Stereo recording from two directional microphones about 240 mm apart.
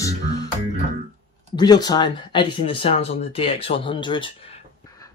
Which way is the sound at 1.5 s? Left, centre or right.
Centre.